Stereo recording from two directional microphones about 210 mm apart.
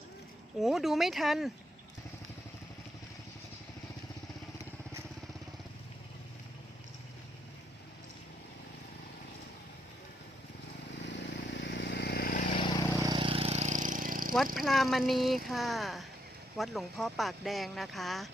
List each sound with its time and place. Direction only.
0.6 s speech: centre (ahead or behind)
11.0 s vehicle: 55° left (ahead or behind); by 12.6 s 40° left (ahead or behind)
13.0 s vehicle: 20° right (ahead or behind); by 14.3 s 40° right (ahead or behind)
14.5 s speech: centre (ahead or behind)